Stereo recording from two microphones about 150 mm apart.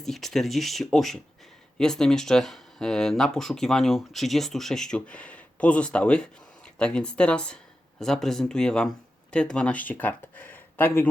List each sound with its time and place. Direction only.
0.0 s speech: centre (ahead or behind)